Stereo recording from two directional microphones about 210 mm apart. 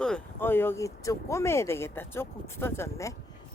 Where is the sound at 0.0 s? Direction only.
5° left (ahead or behind).